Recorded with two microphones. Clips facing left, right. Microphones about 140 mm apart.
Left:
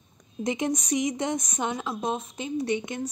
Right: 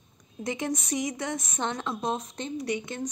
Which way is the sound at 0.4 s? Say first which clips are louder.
Left 3 dB; 20° left (ahead or behind).